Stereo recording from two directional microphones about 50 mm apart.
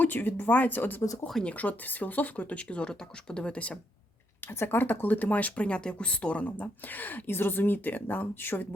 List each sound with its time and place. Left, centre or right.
0.0 s speech: left
4.6 s speech: left